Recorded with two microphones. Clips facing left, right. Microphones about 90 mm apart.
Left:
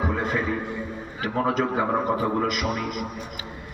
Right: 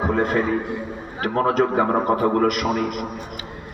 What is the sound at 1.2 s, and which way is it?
A man's voice, 55° right (ahead or behind).